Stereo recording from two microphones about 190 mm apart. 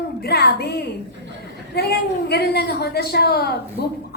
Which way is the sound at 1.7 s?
55° left (ahead or behind).